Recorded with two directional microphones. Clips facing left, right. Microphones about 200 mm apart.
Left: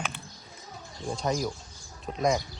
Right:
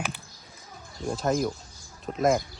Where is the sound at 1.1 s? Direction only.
Centre (ahead or behind).